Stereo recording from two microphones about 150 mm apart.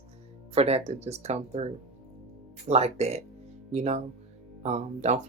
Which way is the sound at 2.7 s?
45° right (ahead or behind).